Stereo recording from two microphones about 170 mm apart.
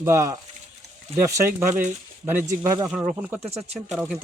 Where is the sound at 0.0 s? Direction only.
15° right (ahead or behind).